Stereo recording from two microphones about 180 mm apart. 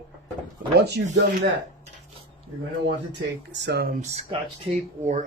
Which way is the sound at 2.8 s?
70° right (ahead or behind).